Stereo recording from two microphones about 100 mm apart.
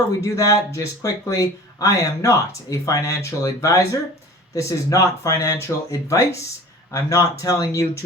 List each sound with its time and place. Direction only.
0.2 s speech: 35° left (ahead or behind)